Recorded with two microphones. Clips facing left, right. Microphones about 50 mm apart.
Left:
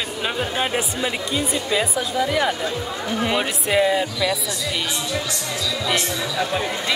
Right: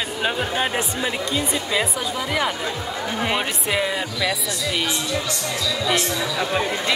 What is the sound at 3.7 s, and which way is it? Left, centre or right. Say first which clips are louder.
Speech: left 6 dB; centre.